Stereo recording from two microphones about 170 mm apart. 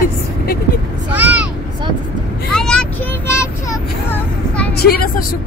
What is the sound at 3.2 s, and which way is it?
Child singing, 15° left (ahead or behind).